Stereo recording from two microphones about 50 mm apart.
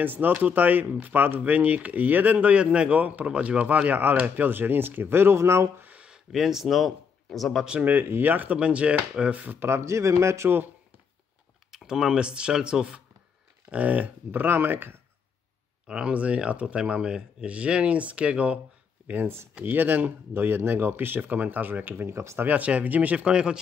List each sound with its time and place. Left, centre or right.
0.0 s speech: right
2.9 s speech: right
5.8 s a sound: right
6.0 s speech: centre
7.8 s speech: right
8.5 s speech: right
9.6 s speech: right
11.7 s speech: centre
13.7 s speech: right
15.9 s speech: right
19.6 s speech: right
22.1 s speech: right
22.4 s speech: right